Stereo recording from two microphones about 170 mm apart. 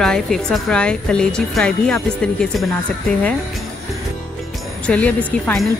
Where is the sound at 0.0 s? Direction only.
5° left (ahead or behind).